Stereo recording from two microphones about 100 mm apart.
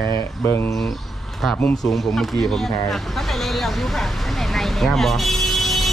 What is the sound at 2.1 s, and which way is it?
Speech, 5° left (ahead or behind).